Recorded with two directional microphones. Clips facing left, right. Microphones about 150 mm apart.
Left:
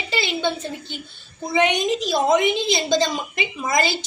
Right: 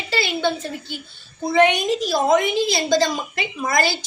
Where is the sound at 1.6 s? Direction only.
20° left (ahead or behind).